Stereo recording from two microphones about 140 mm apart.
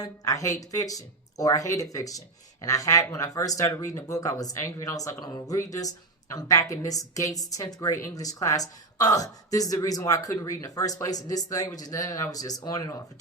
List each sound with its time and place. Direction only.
0.0 s a woman's voice: 25° left (ahead or behind)